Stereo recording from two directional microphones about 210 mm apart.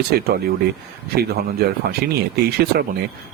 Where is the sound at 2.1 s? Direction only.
50° right (ahead or behind).